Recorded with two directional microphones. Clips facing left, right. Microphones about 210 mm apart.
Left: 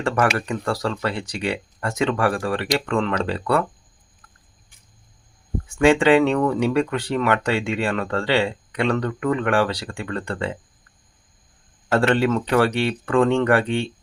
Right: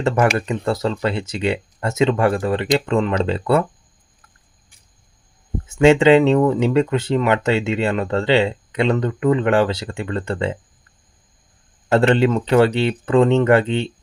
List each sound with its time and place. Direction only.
0.3 s speech: 20° right (ahead or behind)
5.6 s speech: 20° right (ahead or behind)
11.9 s speech: 20° right (ahead or behind)